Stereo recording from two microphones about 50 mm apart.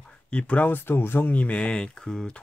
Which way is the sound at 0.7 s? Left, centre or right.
Left.